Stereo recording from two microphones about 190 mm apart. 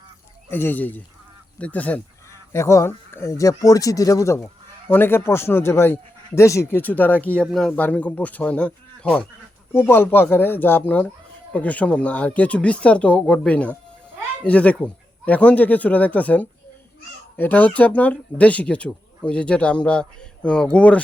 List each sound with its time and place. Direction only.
0.5 s speech: 10° left (ahead or behind)